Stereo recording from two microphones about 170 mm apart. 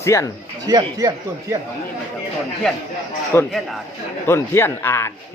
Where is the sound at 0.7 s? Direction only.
20° right (ahead or behind).